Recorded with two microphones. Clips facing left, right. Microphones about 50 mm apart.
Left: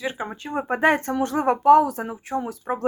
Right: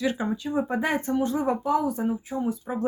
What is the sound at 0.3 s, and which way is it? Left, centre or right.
Speech, left.